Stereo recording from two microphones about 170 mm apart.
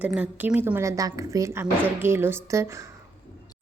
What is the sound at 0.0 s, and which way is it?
A woman's voice, 10° right (ahead or behind).